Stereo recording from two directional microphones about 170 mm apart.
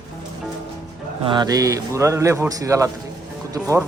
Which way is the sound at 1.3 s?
25° right (ahead or behind).